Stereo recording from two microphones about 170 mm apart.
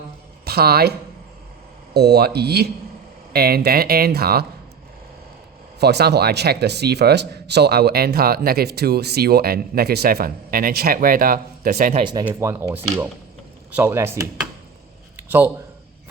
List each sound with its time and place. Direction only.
0.4 s speech: 65° right (ahead or behind)
5.8 s speech: 75° right (ahead or behind); by 11.9 s 60° right (ahead or behind)
11.9 s speech: 25° right (ahead or behind)
12.2 s speech: 15° right (ahead or behind)
15.1 s a sound: 10° right (ahead or behind)